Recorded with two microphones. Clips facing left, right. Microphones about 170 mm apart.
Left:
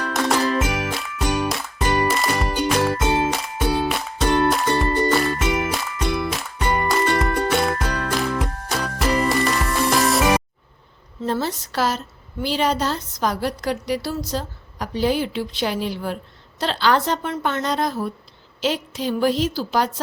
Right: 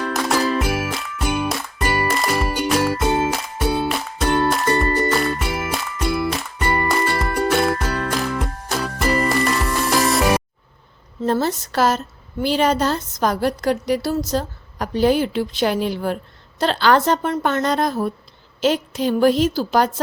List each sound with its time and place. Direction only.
0.0 s music: centre (ahead or behind)
11.2 s a woman's voice: 45° right (ahead or behind)